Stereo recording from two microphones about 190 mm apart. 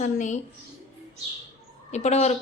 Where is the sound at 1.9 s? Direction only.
35° left (ahead or behind).